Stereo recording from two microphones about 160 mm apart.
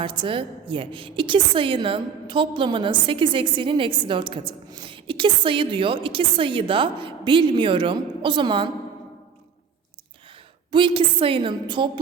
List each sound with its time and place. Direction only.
0.0 s a woman's voice: 30° right (ahead or behind)
10.7 s a woman's voice: 30° right (ahead or behind)